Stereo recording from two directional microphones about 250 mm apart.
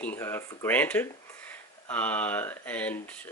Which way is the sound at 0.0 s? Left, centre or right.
Centre.